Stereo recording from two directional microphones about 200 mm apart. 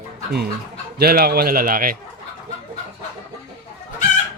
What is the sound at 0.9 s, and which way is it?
Speech, 50° right (ahead or behind).